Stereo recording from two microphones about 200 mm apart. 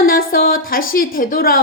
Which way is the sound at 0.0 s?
45° left (ahead or behind).